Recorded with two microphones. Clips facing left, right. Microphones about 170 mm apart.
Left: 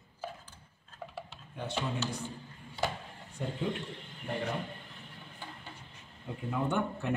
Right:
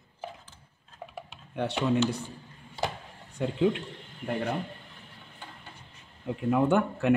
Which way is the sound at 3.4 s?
90° right.